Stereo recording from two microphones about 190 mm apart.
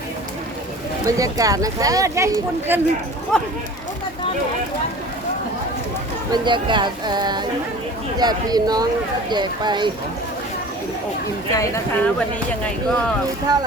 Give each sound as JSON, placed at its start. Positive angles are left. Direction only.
{"t": 1.0, "sound": "speech", "side_deg": -15}
{"t": 3.3, "sound": "speech", "side_deg": 5}
{"t": 6.3, "sound": "speech", "side_deg": -25}
{"t": 11.5, "sound": "speech", "side_deg": 10}
{"t": 13.5, "sound": "speech", "side_deg": -20}